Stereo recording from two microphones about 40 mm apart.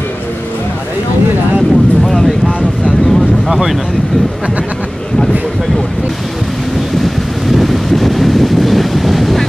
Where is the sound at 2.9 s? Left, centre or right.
Centre.